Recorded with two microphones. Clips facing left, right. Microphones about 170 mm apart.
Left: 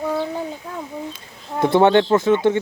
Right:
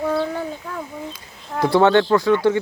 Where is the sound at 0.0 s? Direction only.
15° left (ahead or behind).